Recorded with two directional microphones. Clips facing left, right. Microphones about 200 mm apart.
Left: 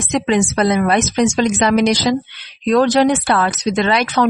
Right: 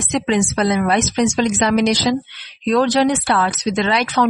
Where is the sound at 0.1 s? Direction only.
50° left (ahead or behind).